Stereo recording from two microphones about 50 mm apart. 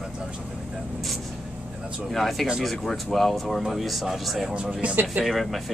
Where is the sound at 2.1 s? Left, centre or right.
Centre.